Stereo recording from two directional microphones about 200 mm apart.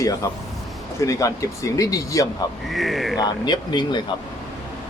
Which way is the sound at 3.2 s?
20° left (ahead or behind).